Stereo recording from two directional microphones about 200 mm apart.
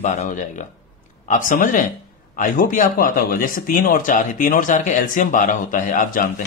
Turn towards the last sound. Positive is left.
turn(degrees=40)  # may be behind; listen again after turning